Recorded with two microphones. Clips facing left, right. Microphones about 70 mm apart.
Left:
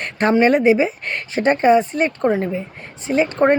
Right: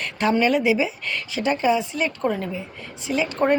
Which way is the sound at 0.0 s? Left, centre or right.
Left.